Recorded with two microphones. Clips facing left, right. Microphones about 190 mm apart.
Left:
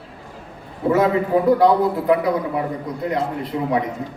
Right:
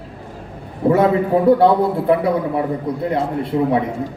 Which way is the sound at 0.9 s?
30° right (ahead or behind).